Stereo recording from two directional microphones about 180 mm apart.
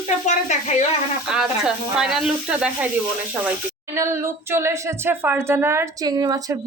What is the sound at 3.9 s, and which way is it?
Speech, 15° right (ahead or behind).